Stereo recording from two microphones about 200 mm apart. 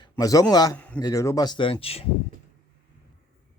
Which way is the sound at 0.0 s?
15° left (ahead or behind).